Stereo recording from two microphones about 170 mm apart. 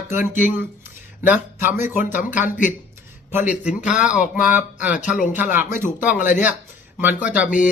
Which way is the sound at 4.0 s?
5° right (ahead or behind).